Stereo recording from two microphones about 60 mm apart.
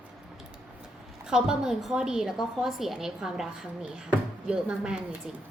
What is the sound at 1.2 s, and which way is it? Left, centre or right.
A woman's voice, centre.